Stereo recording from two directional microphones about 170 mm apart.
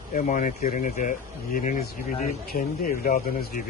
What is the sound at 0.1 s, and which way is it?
Speech, 50° left (ahead or behind).